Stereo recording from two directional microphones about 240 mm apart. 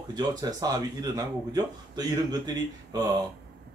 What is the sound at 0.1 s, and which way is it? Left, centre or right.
Speech, centre.